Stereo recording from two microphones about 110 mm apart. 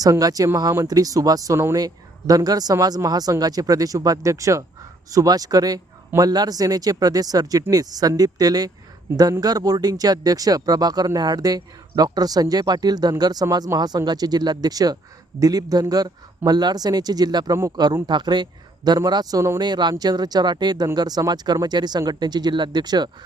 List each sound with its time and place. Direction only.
0.0 s speech: 35° right (ahead or behind)